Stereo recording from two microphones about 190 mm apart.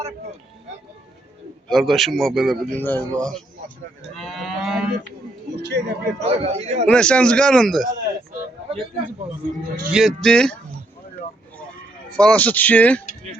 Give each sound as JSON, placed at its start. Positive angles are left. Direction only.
{"t": 1.6, "sound": "a man's voice", "side_deg": 0}
{"t": 4.0, "sound": "moo", "side_deg": 0}
{"t": 5.5, "sound": "speech", "side_deg": -60}
{"t": 6.2, "sound": "a man's voice", "side_deg": -35}
{"t": 6.8, "sound": "a man's voice", "side_deg": 5}
{"t": 9.8, "sound": "a man's voice", "side_deg": 0}
{"t": 12.1, "sound": "speech", "side_deg": 5}